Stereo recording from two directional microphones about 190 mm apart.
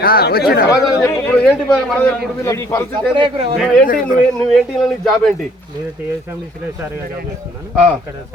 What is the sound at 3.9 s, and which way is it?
Speech, 45° left (ahead or behind).